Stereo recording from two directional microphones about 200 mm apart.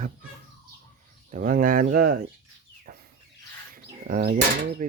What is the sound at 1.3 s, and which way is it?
Speech, 40° right (ahead or behind).